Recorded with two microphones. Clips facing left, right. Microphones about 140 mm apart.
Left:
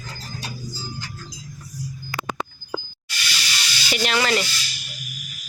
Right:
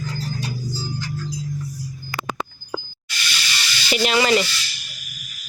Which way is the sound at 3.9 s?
5° right (ahead or behind).